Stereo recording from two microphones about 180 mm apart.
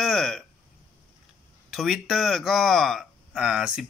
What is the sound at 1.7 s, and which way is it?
Speech, centre (ahead or behind).